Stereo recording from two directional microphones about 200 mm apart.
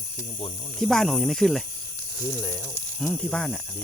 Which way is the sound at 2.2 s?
15° left (ahead or behind).